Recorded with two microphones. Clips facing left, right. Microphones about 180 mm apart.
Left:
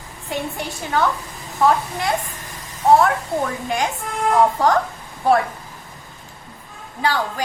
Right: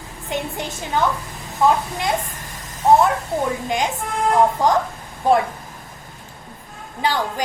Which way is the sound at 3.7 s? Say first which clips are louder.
Right 1 dB; 20° right (ahead or behind).